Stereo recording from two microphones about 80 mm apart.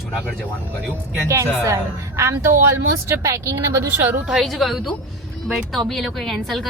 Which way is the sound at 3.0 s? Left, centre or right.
Right.